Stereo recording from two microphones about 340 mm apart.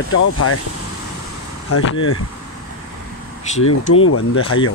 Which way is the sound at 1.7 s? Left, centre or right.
Left.